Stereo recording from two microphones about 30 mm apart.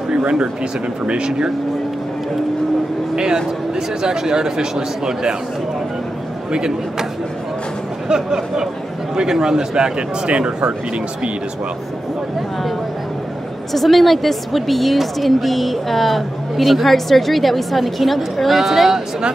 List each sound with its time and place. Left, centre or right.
1.0 s speech: right
3.7 s speech: right
6.5 s speech: right
8.1 s speech: right
13.7 s a woman's voice: centre